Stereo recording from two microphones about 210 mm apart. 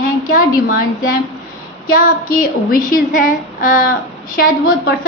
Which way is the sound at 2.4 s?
40° left (ahead or behind).